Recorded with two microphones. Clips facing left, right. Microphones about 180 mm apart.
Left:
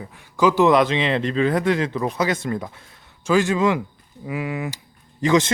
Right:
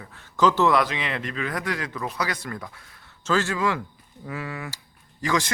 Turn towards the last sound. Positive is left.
turn(degrees=20)  # may be behind; listen again after turning